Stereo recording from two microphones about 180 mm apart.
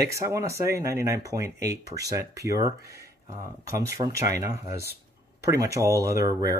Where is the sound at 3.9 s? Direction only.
20° right (ahead or behind).